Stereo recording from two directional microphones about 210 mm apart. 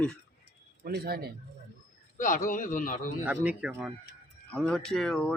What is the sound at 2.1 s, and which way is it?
Speech, 40° left (ahead or behind).